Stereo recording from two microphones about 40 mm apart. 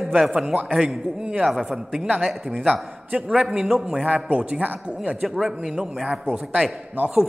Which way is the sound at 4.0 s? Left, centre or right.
Right.